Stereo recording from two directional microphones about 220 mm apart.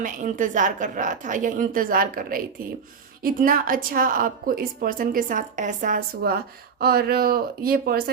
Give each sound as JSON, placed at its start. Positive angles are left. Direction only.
{"t": 0.0, "sound": "a woman's voice", "side_deg": -35}